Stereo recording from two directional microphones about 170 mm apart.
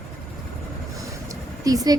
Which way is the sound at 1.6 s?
20° right (ahead or behind).